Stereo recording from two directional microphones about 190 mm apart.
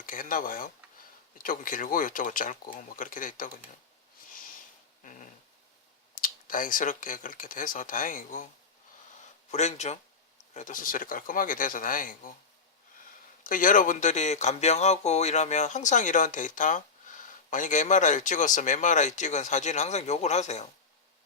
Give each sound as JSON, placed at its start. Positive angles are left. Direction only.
{"t": 0.0, "sound": "speech", "side_deg": 45}
{"t": 5.0, "sound": "dog", "side_deg": 40}
{"t": 6.1, "sound": "speech", "side_deg": 45}
{"t": 9.5, "sound": "speech", "side_deg": 35}
{"t": 13.4, "sound": "speech", "side_deg": 45}